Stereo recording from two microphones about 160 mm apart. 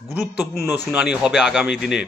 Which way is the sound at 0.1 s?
10° right (ahead or behind).